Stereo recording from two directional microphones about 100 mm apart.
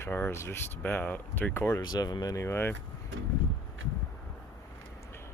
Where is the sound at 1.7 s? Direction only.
40° left (ahead or behind); by 2.7 s 25° left (ahead or behind).